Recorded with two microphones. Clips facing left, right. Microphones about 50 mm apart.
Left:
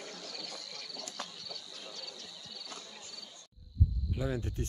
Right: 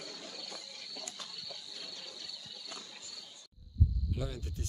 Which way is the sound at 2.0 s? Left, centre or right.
Centre.